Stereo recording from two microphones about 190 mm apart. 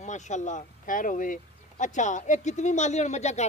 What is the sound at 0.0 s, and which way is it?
Speech, 40° left (ahead or behind).